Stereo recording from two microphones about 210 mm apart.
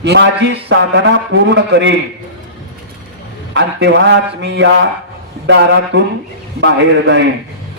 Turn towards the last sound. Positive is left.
turn(degrees=-60)  # may be behind; listen again after turning